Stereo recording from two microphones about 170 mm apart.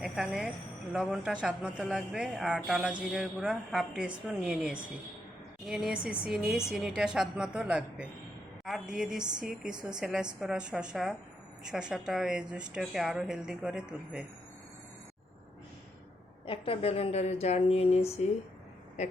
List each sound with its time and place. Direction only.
0.0 s speech: 5° right (ahead or behind)
16.5 s a woman's voice: 35° left (ahead or behind)